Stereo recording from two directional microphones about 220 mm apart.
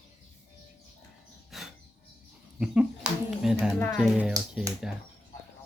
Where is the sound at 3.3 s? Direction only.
Centre (ahead or behind).